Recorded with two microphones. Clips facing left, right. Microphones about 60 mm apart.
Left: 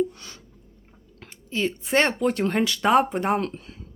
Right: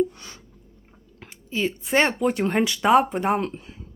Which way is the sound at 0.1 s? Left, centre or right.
Right.